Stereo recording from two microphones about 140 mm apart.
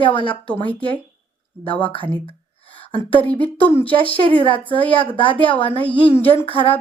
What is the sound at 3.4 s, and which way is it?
Speech, 40° left (ahead or behind).